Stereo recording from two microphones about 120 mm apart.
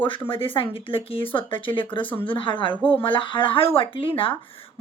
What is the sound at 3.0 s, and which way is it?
Speech, 45° left (ahead or behind).